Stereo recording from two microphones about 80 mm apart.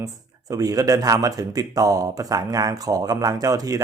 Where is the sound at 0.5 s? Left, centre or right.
Right.